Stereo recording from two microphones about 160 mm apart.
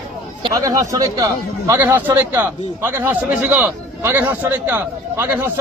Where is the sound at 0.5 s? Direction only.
20° right (ahead or behind).